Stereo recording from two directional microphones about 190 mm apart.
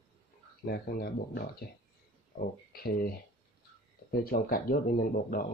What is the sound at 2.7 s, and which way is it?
Speech, 50° left (ahead or behind).